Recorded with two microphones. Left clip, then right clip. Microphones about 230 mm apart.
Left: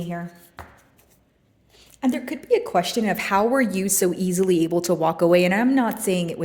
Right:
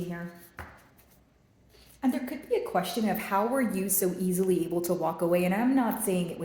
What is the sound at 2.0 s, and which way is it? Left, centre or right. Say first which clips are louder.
A woman's voice: left 5 dB; left.